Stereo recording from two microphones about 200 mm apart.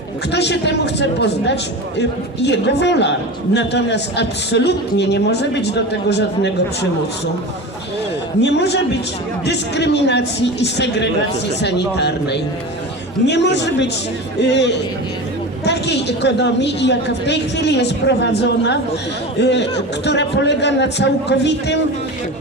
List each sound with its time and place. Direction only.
0.3 s a man's voice: 60° left (ahead or behind)
8.4 s a man's voice: 60° left (ahead or behind)